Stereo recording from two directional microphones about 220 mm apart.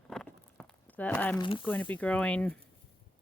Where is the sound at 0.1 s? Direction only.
5° left (ahead or behind).